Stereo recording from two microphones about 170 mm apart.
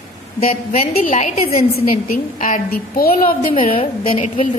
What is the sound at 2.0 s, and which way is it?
A woman's voice, 50° left (ahead or behind).